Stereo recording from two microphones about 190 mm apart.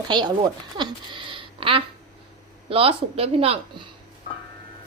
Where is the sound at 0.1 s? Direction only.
20° right (ahead or behind).